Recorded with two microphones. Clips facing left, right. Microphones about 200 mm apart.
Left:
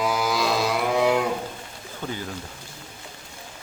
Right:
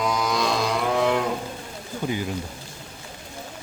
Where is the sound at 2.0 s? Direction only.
10° right (ahead or behind).